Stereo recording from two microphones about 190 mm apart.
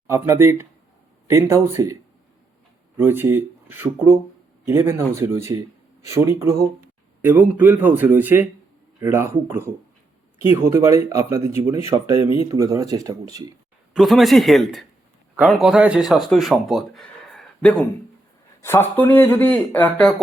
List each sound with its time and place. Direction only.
0.1 s speech: 15° right (ahead or behind)
3.0 s speech: 10° right (ahead or behind)
13.9 s speech: centre (ahead or behind)